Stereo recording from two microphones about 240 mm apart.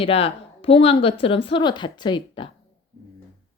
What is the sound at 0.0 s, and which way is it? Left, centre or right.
A woman's voice, left.